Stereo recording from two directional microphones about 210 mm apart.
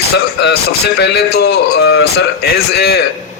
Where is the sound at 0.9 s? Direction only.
50° left (ahead or behind).